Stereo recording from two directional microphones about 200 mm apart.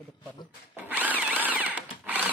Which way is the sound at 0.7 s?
10° right (ahead or behind).